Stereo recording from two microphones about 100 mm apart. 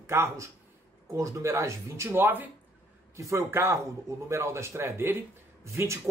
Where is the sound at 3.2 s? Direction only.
30° right (ahead or behind).